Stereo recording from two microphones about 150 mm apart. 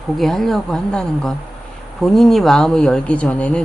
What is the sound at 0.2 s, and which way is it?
Speech, centre (ahead or behind).